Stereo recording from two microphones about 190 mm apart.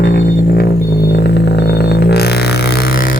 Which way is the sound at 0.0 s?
55° left (ahead or behind).